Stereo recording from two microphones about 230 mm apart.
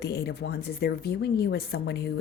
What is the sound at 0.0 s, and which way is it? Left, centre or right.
Speech, left.